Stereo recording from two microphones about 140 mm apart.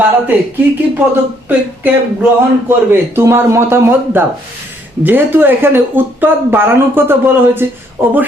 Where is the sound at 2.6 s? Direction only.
15° right (ahead or behind).